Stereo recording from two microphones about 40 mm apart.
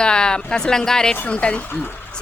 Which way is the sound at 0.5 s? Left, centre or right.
Centre.